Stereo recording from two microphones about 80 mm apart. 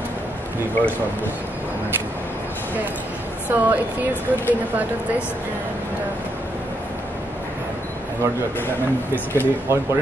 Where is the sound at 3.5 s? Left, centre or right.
Right.